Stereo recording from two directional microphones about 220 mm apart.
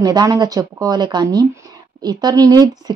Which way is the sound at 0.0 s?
15° right (ahead or behind).